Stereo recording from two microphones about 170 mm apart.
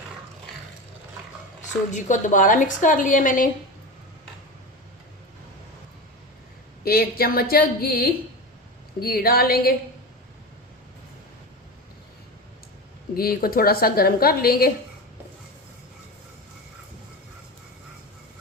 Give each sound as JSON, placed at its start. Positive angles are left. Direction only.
{"t": 1.9, "sound": "a woman's voice", "side_deg": 45}
{"t": 6.8, "sound": "a woman's voice", "side_deg": 65}
{"t": 13.1, "sound": "a woman's voice", "side_deg": 60}